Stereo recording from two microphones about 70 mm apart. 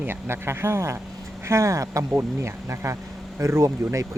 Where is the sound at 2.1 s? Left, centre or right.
Right.